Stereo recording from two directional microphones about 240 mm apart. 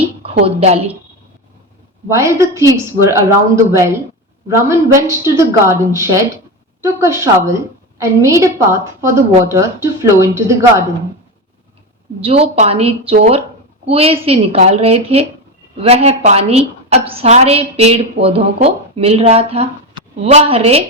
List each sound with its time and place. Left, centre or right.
0.4 s a woman's voice: right
2.0 s speech: centre
12.2 s a woman's voice: right